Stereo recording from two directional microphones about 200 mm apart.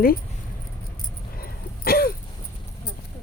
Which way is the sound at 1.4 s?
50° left (ahead or behind).